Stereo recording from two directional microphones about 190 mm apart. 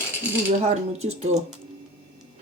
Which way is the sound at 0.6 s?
35° right (ahead or behind).